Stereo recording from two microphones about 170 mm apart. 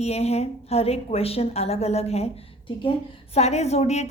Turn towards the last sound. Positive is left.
turn(degrees=40)  # may be behind; listen again after turning